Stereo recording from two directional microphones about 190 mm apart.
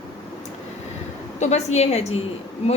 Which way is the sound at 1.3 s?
35° left (ahead or behind).